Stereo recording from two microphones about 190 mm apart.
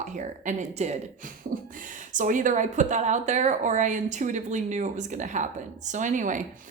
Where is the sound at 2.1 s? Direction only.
45° right (ahead or behind).